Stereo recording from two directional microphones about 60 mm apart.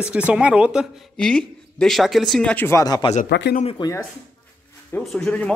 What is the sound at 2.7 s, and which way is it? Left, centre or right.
Speech, left.